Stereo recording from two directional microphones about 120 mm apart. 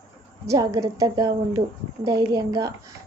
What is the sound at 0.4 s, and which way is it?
A woman's voice, 25° right (ahead or behind).